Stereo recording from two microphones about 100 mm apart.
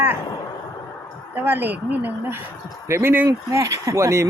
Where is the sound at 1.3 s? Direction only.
20° right (ahead or behind).